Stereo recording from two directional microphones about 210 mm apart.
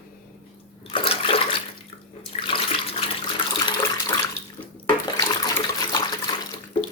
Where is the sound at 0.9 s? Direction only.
25° left (ahead or behind).